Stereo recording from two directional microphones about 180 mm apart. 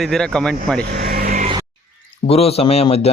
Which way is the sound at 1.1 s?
55° right (ahead or behind).